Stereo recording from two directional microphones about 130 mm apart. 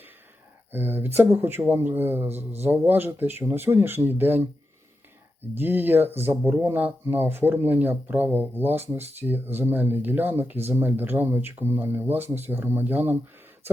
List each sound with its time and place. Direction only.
0.7 s speech: 15° right (ahead or behind)
5.5 s speech: 15° right (ahead or behind)